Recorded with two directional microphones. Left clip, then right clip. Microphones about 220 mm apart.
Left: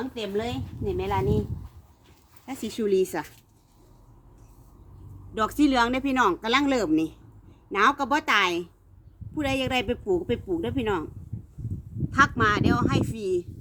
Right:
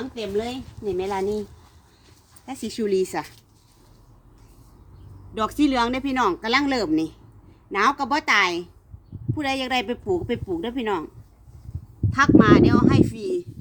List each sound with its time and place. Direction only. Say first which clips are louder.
0.1 s speech: right 3 dB; 10° right (ahead or behind)
2.5 s speech: right 1 dB; 20° right (ahead or behind)
5.3 s speech: right 1 dB; 5° right (ahead or behind)
12.1 s speech: right 5 dB; 10° right (ahead or behind)